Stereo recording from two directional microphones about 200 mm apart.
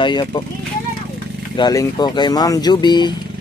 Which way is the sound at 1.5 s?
20° left (ahead or behind).